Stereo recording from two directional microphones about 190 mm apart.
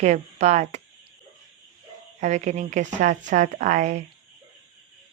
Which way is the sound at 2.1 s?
40° right (ahead or behind).